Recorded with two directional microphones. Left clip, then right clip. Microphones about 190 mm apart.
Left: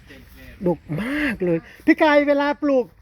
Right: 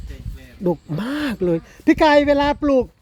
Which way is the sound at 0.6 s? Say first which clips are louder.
Right 1 dB; 10° right (ahead or behind).